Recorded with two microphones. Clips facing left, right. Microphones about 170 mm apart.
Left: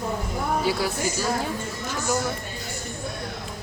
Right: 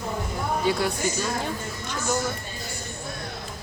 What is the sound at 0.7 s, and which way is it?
Speech, 5° left (ahead or behind).